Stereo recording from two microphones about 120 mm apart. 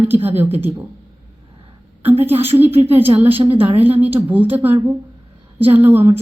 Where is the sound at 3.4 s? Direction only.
50° right (ahead or behind).